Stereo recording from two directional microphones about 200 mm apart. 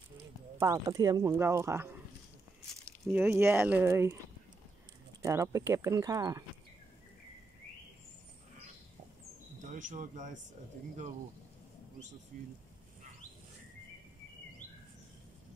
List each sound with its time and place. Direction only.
0.6 s speech: 15° right (ahead or behind)
3.1 s speech: 10° right (ahead or behind)
5.2 s speech: 15° right (ahead or behind)
9.6 s speech: 40° right (ahead or behind)
12.3 s speech: 45° right (ahead or behind)